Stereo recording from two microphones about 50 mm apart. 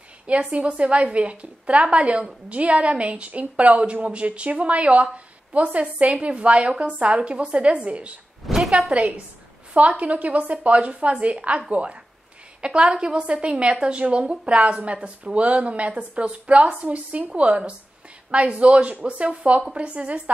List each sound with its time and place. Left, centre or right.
0.3 s a woman's voice: right
8.5 s a sound: centre
8.9 s a woman's voice: right